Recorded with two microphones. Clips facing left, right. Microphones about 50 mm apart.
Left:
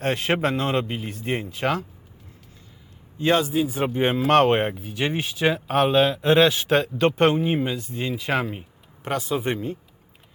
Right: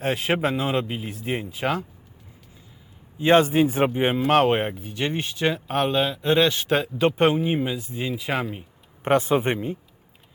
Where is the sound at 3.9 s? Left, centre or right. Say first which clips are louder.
Left 1 dB; centre.